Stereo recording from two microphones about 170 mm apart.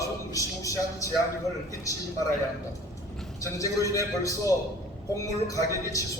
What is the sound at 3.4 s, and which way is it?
A man's voice, 20° left (ahead or behind).